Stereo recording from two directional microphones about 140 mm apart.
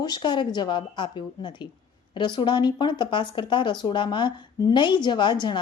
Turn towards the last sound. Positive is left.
turn(degrees=30)  # may be behind; listen again after turning